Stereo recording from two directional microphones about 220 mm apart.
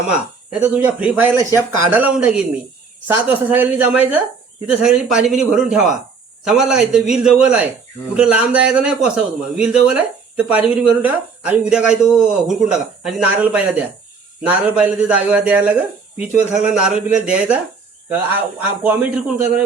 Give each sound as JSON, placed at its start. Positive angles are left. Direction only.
{"t": 0.6, "sound": "a man's voice", "side_deg": -5}
{"t": 18.8, "sound": "a man's voice", "side_deg": -5}